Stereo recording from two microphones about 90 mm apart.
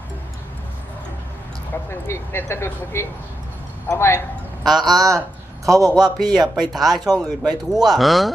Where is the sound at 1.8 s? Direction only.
30° left (ahead or behind).